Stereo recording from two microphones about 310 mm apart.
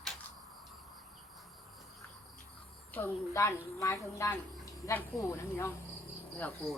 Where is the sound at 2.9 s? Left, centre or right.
Centre.